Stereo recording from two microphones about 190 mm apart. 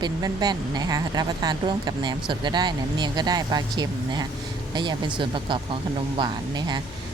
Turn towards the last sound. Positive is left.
turn(degrees=-25)  # may be behind; listen again after turning